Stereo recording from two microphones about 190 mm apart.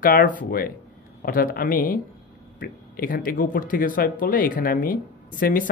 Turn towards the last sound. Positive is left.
turn(degrees=45)  # may be behind; listen again after turning